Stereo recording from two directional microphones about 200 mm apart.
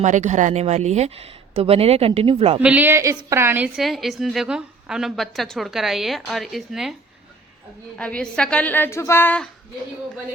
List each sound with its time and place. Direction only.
0.0 s speech: 35° right (ahead or behind)
2.6 s a woman's voice: 10° right (ahead or behind)
7.9 s a woman's voice: 5° left (ahead or behind)